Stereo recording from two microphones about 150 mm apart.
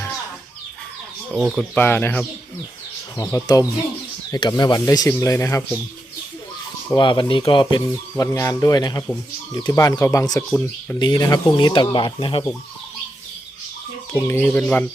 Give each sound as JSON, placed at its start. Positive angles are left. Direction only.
{"t": 1.3, "sound": "speech", "side_deg": -5}
{"t": 1.5, "sound": "speech", "side_deg": 10}
{"t": 3.2, "sound": "speech", "side_deg": 25}
{"t": 6.9, "sound": "speech", "side_deg": 30}
{"t": 11.0, "sound": "speech", "side_deg": 30}
{"t": 14.1, "sound": "speech", "side_deg": 15}